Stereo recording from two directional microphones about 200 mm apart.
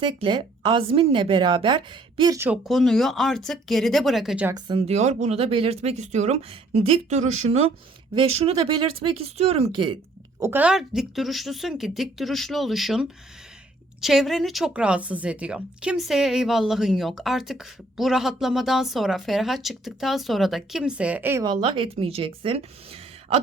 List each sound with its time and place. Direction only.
0.0 s a woman's voice: 25° right (ahead or behind)
2.6 s speech: centre (ahead or behind)
4.9 s a woman's voice: 35° right (ahead or behind)
10.4 s speech: 10° right (ahead or behind); by 22.6 s 30° right (ahead or behind)